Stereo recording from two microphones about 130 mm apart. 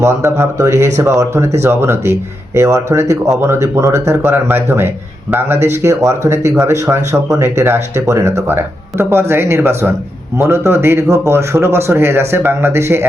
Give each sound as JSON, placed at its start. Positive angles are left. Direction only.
{"t": 0.0, "sound": "speech", "side_deg": -20}